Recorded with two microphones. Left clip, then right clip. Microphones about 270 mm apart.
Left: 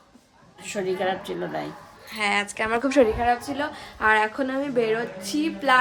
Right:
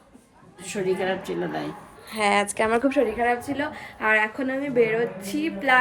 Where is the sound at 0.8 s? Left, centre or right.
Left.